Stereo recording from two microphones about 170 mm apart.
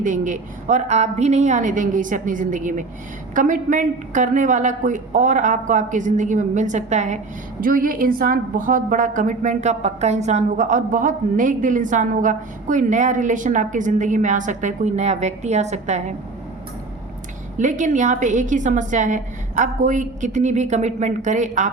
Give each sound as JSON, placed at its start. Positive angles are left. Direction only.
{"t": 0.0, "sound": "a woman's voice", "side_deg": -50}
{"t": 7.6, "sound": "a woman's voice", "side_deg": -55}
{"t": 17.6, "sound": "a woman's voice", "side_deg": -45}